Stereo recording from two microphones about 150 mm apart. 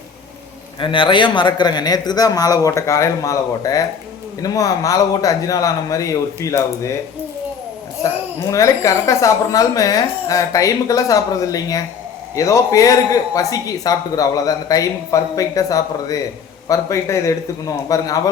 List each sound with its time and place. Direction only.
0.8 s a man's voice: 35° left (ahead or behind)
8.4 s a man's voice: 20° left (ahead or behind)